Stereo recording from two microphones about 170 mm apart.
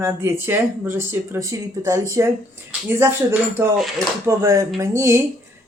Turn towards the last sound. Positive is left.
turn(degrees=-15)  # may be behind; listen again after turning